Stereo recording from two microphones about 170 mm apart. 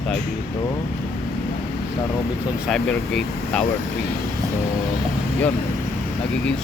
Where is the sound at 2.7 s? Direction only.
5° left (ahead or behind).